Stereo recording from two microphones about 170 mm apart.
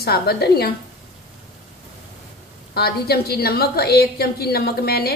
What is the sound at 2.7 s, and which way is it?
A woman's voice, 65° left (ahead or behind).